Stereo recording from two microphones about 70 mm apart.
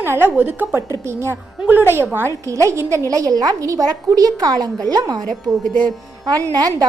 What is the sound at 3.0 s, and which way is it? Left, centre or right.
A woman's voice, right.